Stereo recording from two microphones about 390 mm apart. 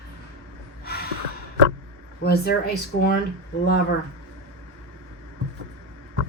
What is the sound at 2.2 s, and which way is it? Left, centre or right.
Speech, left.